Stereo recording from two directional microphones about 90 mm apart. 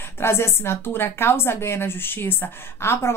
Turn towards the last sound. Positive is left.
turn(degrees=30)  # may be behind; listen again after turning